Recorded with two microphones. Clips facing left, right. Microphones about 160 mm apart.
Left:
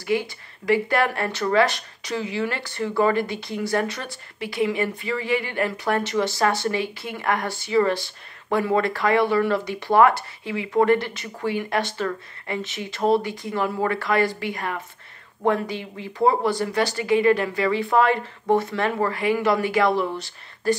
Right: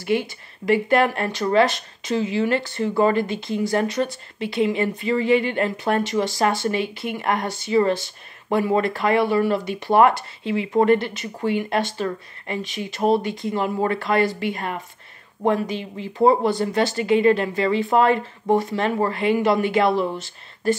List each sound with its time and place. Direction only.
0.7 s speech: 20° right (ahead or behind)